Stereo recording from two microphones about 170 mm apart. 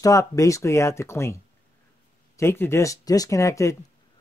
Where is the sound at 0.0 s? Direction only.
20° left (ahead or behind).